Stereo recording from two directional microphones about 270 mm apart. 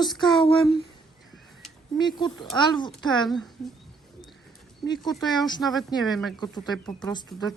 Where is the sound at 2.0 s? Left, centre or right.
Centre.